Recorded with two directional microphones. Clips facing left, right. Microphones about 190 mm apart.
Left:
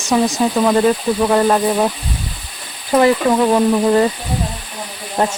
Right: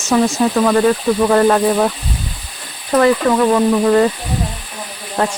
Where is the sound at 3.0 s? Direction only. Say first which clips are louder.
Right 1 dB; 15° left (ahead or behind).